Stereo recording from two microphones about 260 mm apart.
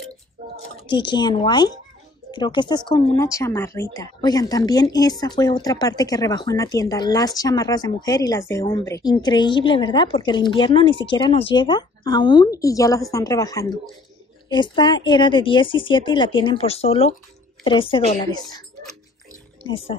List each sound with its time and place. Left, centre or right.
0.7 s a woman's voice: centre